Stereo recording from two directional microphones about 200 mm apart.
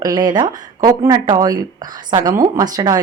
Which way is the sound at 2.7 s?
20° right (ahead or behind).